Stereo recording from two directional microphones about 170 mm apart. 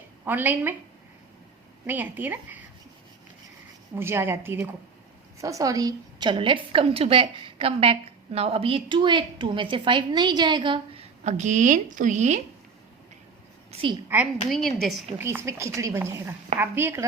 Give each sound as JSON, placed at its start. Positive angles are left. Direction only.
{"t": 0.3, "sound": "speech", "side_deg": -10}
{"t": 1.9, "sound": "speech", "side_deg": -10}
{"t": 3.9, "sound": "a woman's voice", "side_deg": -15}
{"t": 14.1, "sound": "speech", "side_deg": -10}
{"t": 14.5, "sound": "a woman's voice", "side_deg": 0}
{"t": 15.2, "sound": "speech", "side_deg": -15}